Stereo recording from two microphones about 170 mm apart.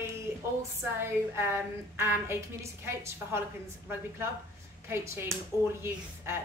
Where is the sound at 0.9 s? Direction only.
15° right (ahead or behind).